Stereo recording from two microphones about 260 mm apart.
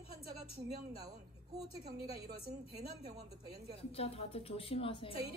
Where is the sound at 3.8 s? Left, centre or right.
Left.